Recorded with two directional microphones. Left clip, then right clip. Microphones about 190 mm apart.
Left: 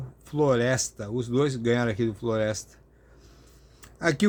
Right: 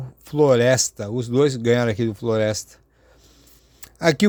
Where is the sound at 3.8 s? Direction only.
40° right (ahead or behind).